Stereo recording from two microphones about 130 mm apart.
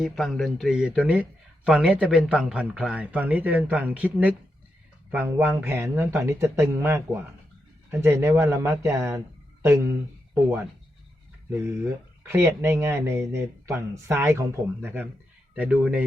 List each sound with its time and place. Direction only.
0.0 s a man's voice: centre (ahead or behind); by 9.2 s 20° right (ahead or behind)
11.5 s a man's voice: 20° right (ahead or behind)